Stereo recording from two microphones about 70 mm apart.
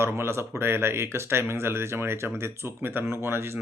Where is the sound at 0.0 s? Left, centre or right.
Right.